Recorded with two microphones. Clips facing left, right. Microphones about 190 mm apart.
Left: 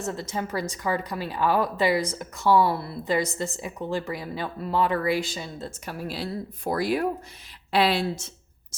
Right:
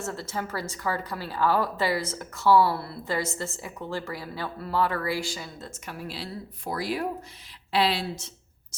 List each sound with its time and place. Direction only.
0.0 s speech: 15° left (ahead or behind); by 8.2 s 50° left (ahead or behind)